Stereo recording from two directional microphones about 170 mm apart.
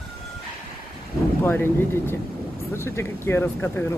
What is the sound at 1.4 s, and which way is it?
Speech, 10° left (ahead or behind).